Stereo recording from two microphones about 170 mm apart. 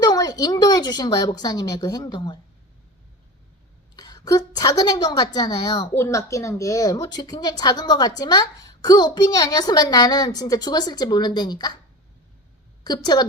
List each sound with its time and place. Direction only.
0.0 s a woman's voice: 20° left (ahead or behind)
3.9 s a woman's voice: 25° left (ahead or behind)
12.8 s a woman's voice: 25° left (ahead or behind)